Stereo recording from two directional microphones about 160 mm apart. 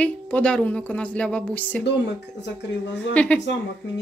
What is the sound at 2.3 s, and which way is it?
Speech, 90° left.